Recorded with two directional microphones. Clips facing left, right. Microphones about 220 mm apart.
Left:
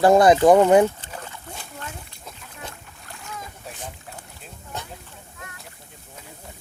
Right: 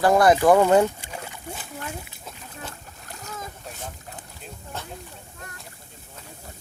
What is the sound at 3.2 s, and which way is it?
Boat, 40° right (ahead or behind).